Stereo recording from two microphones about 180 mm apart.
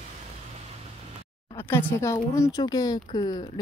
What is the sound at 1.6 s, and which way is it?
Speech, 10° left (ahead or behind).